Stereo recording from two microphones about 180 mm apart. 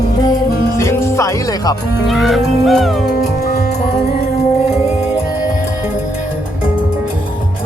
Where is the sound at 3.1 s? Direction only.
55° left (ahead or behind).